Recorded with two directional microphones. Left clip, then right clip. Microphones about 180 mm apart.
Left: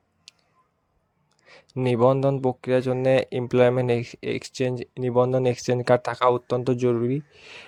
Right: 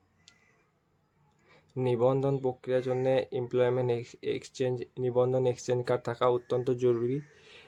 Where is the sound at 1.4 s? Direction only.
40° left (ahead or behind).